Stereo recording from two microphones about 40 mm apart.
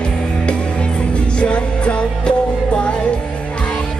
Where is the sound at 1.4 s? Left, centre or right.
Left.